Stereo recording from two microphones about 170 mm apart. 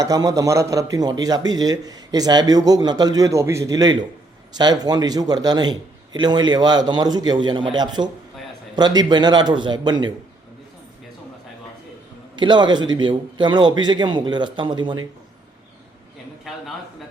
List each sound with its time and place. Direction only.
0.0 s a man's voice: 20° right (ahead or behind)
12.4 s a man's voice: 25° right (ahead or behind)